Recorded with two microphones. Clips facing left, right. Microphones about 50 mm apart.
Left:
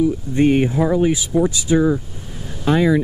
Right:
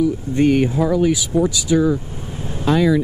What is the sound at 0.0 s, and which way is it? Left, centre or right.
Speech, left.